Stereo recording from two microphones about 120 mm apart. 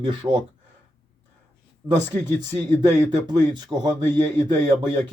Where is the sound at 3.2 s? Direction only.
35° right (ahead or behind).